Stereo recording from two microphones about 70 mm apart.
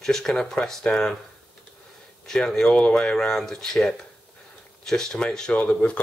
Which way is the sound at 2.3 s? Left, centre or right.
Centre.